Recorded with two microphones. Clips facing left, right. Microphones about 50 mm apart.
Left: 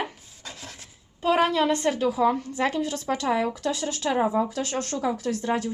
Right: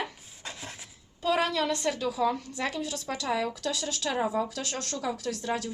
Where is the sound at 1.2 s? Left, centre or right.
Left.